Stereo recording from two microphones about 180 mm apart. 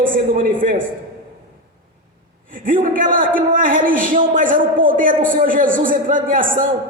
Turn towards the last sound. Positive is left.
turn(degrees=-50)  # may be behind; listen again after turning